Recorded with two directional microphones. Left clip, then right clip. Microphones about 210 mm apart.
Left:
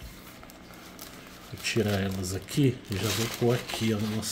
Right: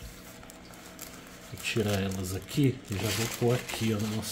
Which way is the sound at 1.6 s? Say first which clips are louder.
Left 2 dB; 10° left (ahead or behind).